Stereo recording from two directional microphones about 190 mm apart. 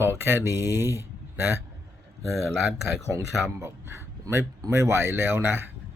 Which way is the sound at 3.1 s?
15° right (ahead or behind).